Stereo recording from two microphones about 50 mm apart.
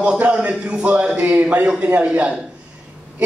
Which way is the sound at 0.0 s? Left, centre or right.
Right.